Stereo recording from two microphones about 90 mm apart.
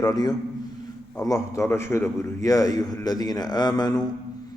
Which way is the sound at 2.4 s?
40° left (ahead or behind).